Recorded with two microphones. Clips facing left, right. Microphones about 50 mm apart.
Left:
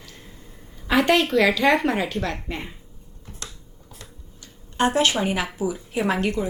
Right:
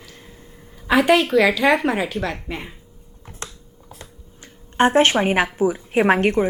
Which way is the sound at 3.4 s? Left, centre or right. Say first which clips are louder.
Right 4 dB; right.